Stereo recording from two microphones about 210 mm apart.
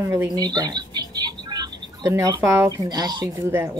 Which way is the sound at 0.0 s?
10° right (ahead or behind).